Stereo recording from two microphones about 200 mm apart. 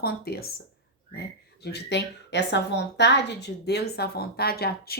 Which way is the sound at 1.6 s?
55° left (ahead or behind).